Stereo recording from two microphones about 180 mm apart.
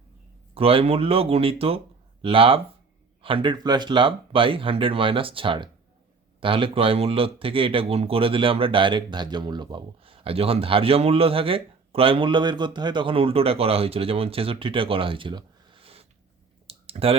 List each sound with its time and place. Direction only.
0.5 s speech: 30° right (ahead or behind)
16.6 s clicking: 30° right (ahead or behind)